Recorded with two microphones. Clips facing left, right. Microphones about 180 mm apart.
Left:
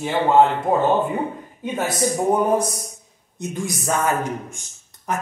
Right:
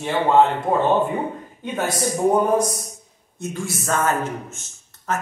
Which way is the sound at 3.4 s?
15° left (ahead or behind).